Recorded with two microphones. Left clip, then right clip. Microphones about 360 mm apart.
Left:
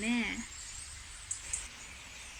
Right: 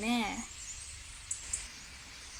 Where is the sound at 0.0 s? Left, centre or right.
Centre.